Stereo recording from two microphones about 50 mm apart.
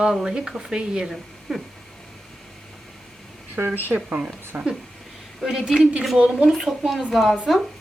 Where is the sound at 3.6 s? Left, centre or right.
Right.